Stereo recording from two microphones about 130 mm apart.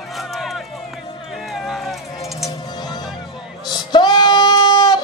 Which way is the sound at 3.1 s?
35° left (ahead or behind).